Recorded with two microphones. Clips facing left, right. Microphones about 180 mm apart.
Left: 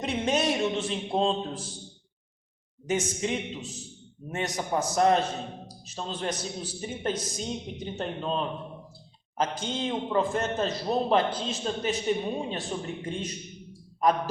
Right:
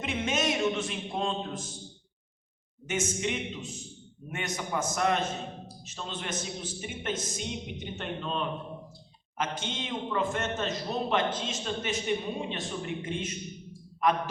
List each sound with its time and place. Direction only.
0.0 s a man's voice: 35° left (ahead or behind)
2.8 s a man's voice: 35° left (ahead or behind)